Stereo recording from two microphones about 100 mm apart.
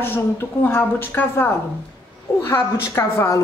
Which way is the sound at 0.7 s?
25° left (ahead or behind).